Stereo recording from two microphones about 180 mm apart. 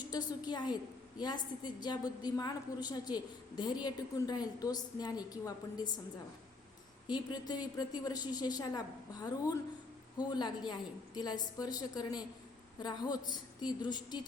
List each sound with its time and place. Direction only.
0.1 s a woman's voice: 25° left (ahead or behind)
7.1 s a woman's voice: 25° left (ahead or behind)